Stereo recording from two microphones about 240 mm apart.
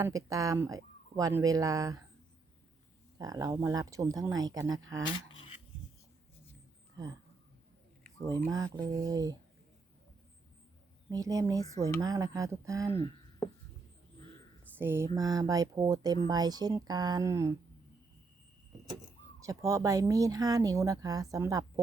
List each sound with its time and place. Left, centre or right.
0.0 s speech: centre
3.2 s speech: centre
4.8 s speech: right
7.0 s speech: centre
8.4 s speech: centre
11.1 s speech: centre
14.8 s speech: centre
19.4 s speech: centre